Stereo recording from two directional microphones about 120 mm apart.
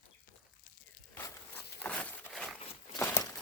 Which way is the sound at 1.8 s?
15° left (ahead or behind).